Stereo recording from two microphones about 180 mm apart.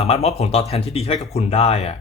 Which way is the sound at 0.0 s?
35° left (ahead or behind).